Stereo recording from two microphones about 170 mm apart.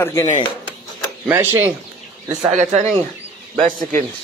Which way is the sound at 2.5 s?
45° right (ahead or behind).